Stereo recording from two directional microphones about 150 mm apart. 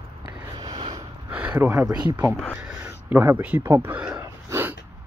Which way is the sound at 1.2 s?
10° right (ahead or behind).